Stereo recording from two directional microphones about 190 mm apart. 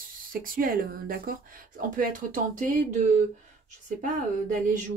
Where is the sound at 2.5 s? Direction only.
45° right (ahead or behind).